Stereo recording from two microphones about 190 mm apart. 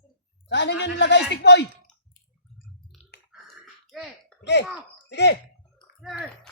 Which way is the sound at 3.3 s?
Centre (ahead or behind).